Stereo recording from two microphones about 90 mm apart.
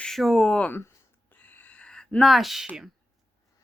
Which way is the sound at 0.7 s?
25° left (ahead or behind).